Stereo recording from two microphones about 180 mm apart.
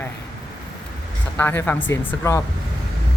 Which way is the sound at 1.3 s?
10° left (ahead or behind).